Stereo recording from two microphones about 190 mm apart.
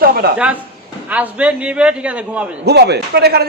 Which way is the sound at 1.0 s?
10° right (ahead or behind).